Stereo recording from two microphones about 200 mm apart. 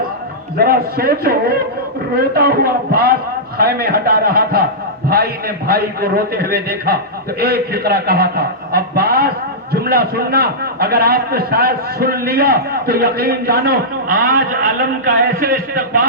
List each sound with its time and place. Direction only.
0.6 s a man's voice: 50° right (ahead or behind)